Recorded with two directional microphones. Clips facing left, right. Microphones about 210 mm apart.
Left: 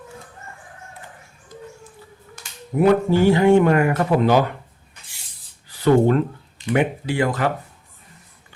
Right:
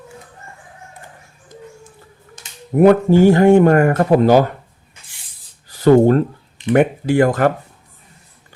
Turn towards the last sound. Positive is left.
turn(degrees=-50)  # may be behind; listen again after turning